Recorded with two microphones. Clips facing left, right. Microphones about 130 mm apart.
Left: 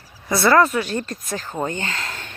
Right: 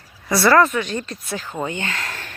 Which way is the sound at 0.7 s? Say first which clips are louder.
Left 1 dB; 40° left (ahead or behind).